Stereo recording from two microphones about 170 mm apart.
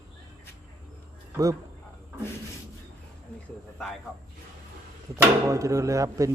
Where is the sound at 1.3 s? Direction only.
20° right (ahead or behind).